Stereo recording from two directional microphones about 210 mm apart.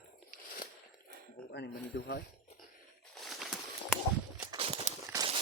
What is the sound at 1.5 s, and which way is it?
Speech, 50° left (ahead or behind).